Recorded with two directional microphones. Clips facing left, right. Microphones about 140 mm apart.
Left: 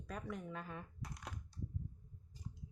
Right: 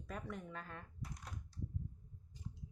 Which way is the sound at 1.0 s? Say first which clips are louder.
Left 1 dB; 75° left (ahead or behind).